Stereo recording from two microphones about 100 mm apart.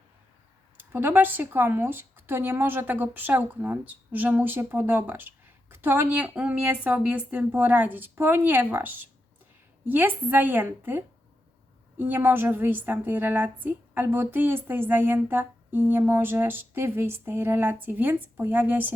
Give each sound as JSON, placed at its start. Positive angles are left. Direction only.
{"t": 0.8, "sound": "a woman's voice", "side_deg": -20}